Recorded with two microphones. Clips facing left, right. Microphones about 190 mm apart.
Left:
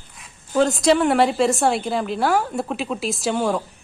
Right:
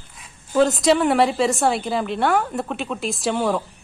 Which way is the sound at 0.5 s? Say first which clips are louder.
Even; centre (ahead or behind).